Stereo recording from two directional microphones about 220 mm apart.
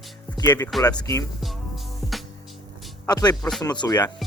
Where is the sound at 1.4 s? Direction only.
Centre (ahead or behind).